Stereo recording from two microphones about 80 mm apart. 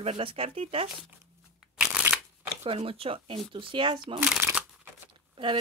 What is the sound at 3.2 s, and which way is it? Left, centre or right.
Speech, right.